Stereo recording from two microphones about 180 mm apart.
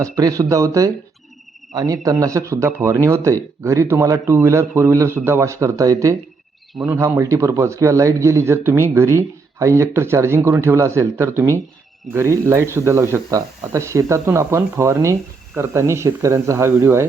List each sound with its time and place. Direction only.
0.0 s a man's voice: 20° right (ahead or behind)